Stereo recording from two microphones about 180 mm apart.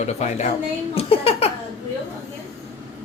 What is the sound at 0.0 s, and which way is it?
Speech, 40° left (ahead or behind).